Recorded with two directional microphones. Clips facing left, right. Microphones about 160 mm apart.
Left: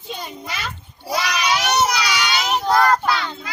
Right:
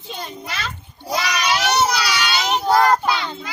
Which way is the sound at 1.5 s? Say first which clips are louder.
Right 1 dB; 10° left (ahead or behind).